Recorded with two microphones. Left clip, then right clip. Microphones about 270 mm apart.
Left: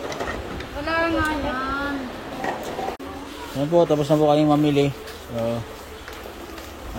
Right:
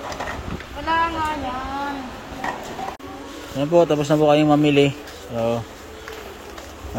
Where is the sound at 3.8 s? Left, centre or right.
Centre.